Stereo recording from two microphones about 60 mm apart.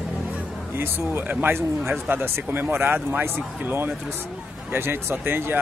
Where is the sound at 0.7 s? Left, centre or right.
Right.